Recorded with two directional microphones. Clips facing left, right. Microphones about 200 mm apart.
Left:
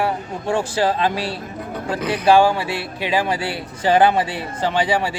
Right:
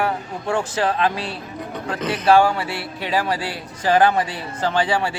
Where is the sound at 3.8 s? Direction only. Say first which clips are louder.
Left 1 dB; 25° left (ahead or behind).